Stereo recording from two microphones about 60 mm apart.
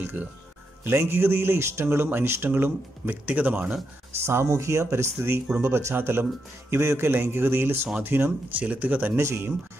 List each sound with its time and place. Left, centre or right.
0.0 s speech: right
4.2 s speech: right
8.6 s speech: right
9.1 s speech: right